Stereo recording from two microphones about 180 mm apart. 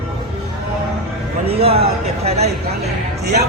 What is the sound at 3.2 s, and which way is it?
Speech, 65° right (ahead or behind).